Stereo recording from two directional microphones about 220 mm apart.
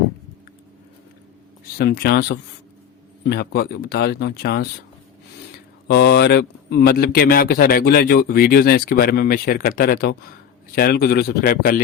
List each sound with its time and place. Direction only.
1.6 s speech: 45° left (ahead or behind)
5.9 s speech: 50° left (ahead or behind)